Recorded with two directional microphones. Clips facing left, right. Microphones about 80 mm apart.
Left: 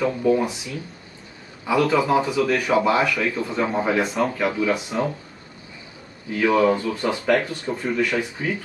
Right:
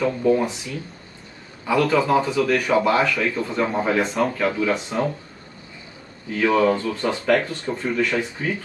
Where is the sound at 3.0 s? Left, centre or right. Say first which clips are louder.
Even; centre.